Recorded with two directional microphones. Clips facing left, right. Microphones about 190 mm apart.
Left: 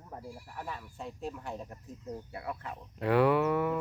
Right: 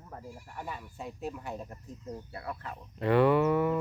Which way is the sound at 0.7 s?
10° right (ahead or behind).